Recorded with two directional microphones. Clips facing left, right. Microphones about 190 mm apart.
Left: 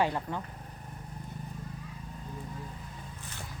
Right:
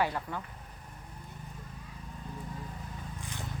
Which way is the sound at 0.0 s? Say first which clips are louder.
Left 2 dB; 20° left (ahead or behind).